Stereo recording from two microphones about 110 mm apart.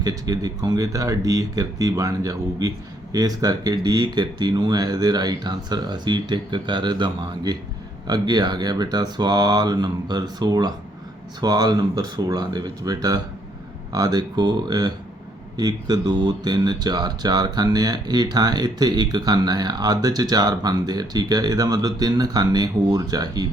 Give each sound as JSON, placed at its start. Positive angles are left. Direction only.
{"t": 0.0, "sound": "speech", "side_deg": -35}